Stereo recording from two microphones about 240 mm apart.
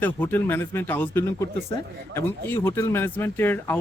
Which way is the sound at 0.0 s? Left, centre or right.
Centre.